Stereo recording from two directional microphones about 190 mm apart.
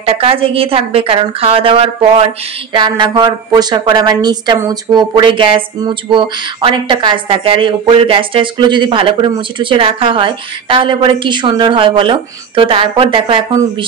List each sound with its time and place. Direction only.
0.0 s a woman's voice: 30° right (ahead or behind)